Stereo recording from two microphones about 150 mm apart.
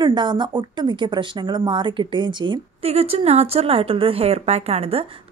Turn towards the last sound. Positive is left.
turn(degrees=-40)  # may be behind; listen again after turning